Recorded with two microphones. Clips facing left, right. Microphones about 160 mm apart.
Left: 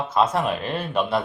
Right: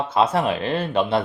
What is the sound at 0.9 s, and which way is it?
Speech, 30° right (ahead or behind).